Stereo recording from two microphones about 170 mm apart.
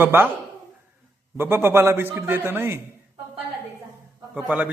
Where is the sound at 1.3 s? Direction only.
15° right (ahead or behind).